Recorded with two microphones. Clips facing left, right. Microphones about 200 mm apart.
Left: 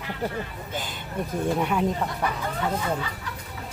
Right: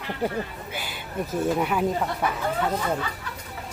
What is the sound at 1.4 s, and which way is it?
Speech, 5° right (ahead or behind).